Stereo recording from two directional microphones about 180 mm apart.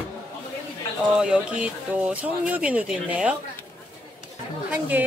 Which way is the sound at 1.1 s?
5° right (ahead or behind).